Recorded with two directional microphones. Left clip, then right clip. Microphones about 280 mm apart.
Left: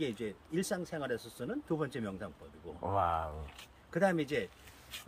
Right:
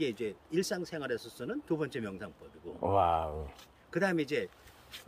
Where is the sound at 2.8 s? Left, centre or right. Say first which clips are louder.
Right 4 dB; right.